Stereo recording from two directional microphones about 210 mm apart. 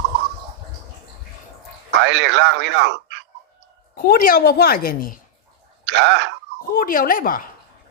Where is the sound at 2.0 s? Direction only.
55° right (ahead or behind).